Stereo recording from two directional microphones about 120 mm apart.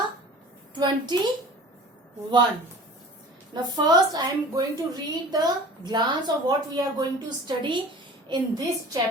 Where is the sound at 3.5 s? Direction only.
35° right (ahead or behind).